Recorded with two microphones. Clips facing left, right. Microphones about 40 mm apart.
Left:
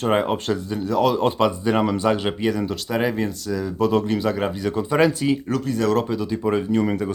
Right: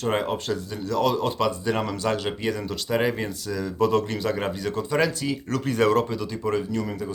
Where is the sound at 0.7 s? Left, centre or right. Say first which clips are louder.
Left 4 dB; centre.